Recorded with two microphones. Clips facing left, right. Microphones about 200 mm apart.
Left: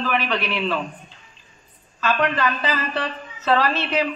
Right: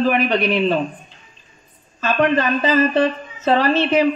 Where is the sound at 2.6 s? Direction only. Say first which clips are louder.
Right 9 dB; 45° right (ahead or behind).